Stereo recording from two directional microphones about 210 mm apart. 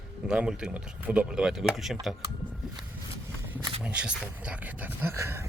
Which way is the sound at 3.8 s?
5° right (ahead or behind).